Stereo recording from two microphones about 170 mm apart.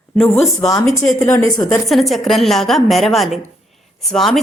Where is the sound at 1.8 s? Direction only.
Centre (ahead or behind).